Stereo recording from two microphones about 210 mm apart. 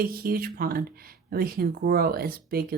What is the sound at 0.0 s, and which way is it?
Speech, 45° right (ahead or behind).